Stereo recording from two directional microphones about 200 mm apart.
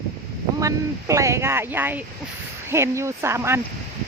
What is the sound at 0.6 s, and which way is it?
Speech, 15° right (ahead or behind).